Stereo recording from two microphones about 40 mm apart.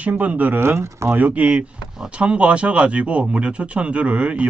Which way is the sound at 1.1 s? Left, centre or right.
Right.